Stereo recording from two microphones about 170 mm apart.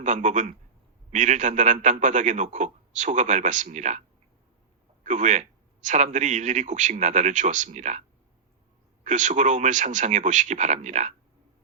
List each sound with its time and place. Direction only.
0.0 s a man's voice: 45° right (ahead or behind)
5.0 s a man's voice: 45° right (ahead or behind)
9.0 s a man's voice: 45° right (ahead or behind)